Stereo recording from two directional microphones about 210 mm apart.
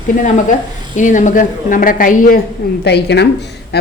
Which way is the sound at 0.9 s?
35° left (ahead or behind).